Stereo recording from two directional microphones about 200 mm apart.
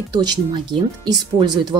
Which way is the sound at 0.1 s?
20° right (ahead or behind).